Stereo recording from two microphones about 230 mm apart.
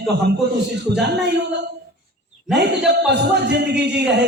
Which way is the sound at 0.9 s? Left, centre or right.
Right.